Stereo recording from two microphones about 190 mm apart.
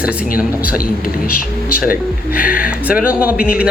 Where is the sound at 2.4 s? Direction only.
50° left (ahead or behind).